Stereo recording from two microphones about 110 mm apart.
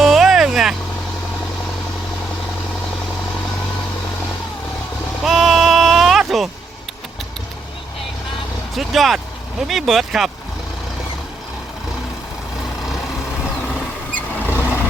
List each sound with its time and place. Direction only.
0.0 s vehicle: centre (ahead or behind)
5.2 s bleat: centre (ahead or behind)
8.7 s vehicle: centre (ahead or behind)
14.4 s vehicle: 15° right (ahead or behind)